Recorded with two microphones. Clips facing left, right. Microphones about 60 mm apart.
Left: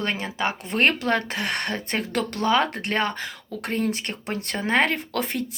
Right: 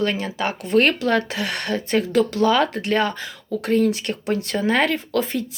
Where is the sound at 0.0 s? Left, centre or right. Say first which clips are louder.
Right 3 dB; left.